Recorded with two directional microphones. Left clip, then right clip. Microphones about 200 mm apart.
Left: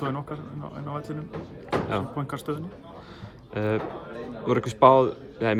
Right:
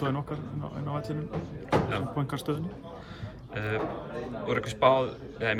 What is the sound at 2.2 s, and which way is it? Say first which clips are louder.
Speech: left 1 dB; 10° left (ahead or behind).